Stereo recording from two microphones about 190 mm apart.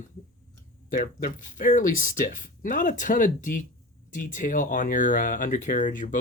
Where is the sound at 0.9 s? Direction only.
45° left (ahead or behind).